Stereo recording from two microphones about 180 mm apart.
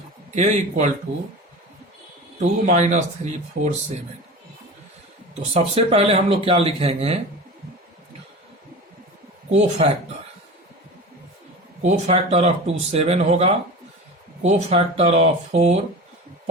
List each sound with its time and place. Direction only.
0.3 s speech: 40° right (ahead or behind)
2.4 s speech: 40° right (ahead or behind)
3.6 s speech: 55° right (ahead or behind)
5.4 s speech: 35° right (ahead or behind)
9.8 s speech: 35° right (ahead or behind)
11.8 s speech: 40° right (ahead or behind)